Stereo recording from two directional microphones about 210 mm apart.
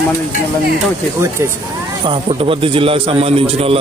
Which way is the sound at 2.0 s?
25° right (ahead or behind).